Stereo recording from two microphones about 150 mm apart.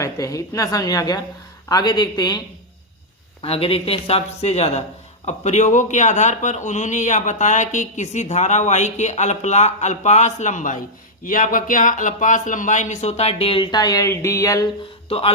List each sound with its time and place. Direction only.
0.0 s a woman's voice: 20° left (ahead or behind)
3.4 s a man's voice: 40° left (ahead or behind); by 14.7 s 20° left (ahead or behind)
15.1 s speech: 40° left (ahead or behind)